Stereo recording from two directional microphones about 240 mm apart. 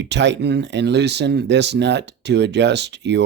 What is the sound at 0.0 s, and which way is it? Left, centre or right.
Speech, right.